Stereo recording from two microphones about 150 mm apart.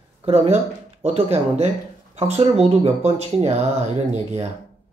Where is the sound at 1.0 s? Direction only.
45° right (ahead or behind).